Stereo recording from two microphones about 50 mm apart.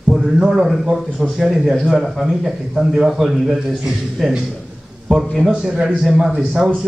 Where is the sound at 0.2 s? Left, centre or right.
Centre.